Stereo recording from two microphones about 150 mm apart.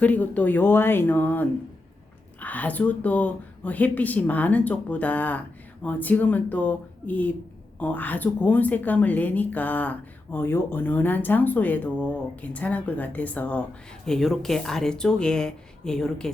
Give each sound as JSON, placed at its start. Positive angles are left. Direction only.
{"t": 0.0, "sound": "speech", "side_deg": 10}